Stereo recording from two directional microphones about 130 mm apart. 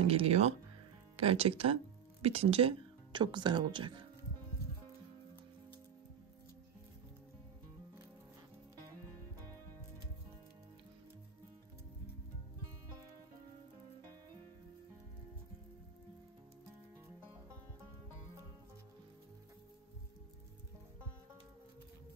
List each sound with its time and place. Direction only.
0.0 s speech: 50° right (ahead or behind)